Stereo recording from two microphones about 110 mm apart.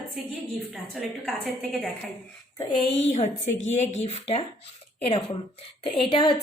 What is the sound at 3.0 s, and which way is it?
A woman's voice, 90° left.